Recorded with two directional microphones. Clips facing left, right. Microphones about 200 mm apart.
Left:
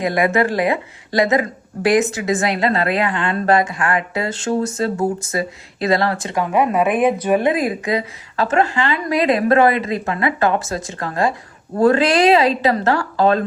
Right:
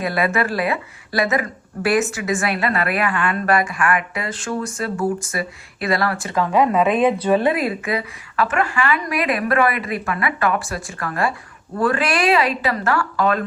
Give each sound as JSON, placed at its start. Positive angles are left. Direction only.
{"t": 0.0, "sound": "a woman's voice", "side_deg": 20}